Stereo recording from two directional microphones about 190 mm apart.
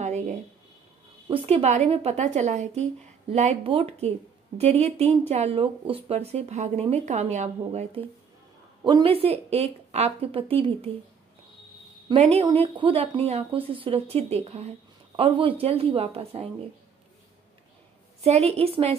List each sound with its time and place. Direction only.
0.0 s a sound: 35° right (ahead or behind)
1.3 s speech: 30° right (ahead or behind)
12.1 s speech: 35° right (ahead or behind)
18.2 s speech: 35° right (ahead or behind)